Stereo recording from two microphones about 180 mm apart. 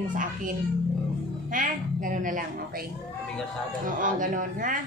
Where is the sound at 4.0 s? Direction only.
45° right (ahead or behind).